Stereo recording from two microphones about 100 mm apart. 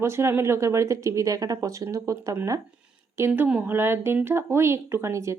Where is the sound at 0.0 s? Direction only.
25° right (ahead or behind).